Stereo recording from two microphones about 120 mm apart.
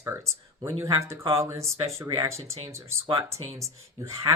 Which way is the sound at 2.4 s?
60° right (ahead or behind).